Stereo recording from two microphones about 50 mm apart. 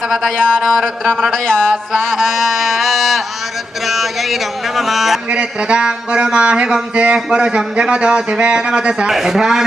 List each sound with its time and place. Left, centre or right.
0.3 s speech: centre
0.6 s speech: centre
2.0 s a sound: centre
3.8 s speech: centre
5.3 s speech: right
9.0 s speech: centre